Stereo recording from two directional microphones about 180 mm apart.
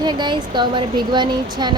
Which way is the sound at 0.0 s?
25° right (ahead or behind).